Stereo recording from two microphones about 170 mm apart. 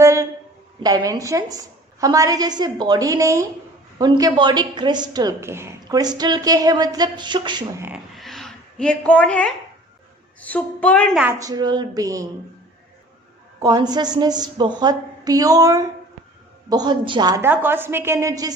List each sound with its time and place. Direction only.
0.0 s a sound: 20° right (ahead or behind)
0.8 s a woman's voice: 25° right (ahead or behind)
7.8 s a woman's voice: 5° right (ahead or behind)
11.2 s a woman's voice: 15° right (ahead or behind)
13.6 s a woman's voice: 25° right (ahead or behind)